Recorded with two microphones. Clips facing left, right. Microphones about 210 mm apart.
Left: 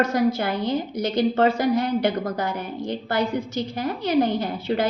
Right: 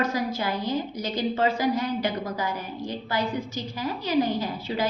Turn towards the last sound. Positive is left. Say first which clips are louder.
# left 4 dB
turn(degrees=60)  # may be behind; listen again after turning